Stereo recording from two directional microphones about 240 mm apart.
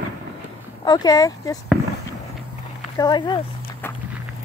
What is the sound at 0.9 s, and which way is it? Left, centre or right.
Speech, centre.